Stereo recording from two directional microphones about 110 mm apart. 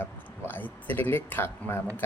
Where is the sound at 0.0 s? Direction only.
20° left (ahead or behind).